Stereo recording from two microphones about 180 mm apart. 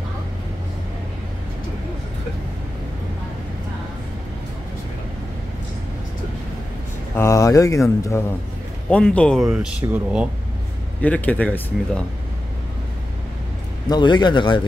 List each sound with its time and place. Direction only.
7.2 s speech: 15° left (ahead or behind); by 10.2 s 5° right (ahead or behind)
11.0 s speech: 10° left (ahead or behind)
13.8 s a man's voice: 25° left (ahead or behind)